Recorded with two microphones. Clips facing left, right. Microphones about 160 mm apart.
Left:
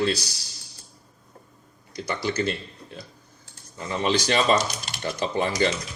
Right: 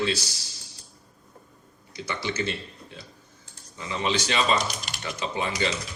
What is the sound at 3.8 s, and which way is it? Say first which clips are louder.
Speech: left 3 dB; 45° left (ahead or behind).